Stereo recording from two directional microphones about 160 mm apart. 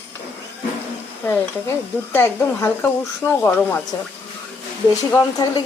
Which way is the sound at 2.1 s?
15° left (ahead or behind).